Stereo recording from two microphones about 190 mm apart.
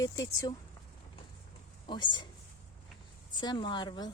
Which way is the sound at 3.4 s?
25° left (ahead or behind).